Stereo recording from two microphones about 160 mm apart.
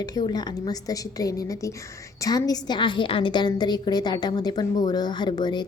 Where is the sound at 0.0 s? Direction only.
25° left (ahead or behind).